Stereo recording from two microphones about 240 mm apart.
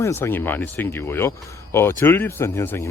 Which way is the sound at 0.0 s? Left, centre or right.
Centre.